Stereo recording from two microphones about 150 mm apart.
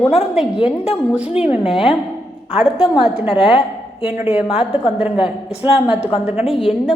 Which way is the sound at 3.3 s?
35° left (ahead or behind).